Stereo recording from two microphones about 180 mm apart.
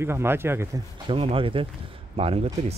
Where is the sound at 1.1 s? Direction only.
30° right (ahead or behind).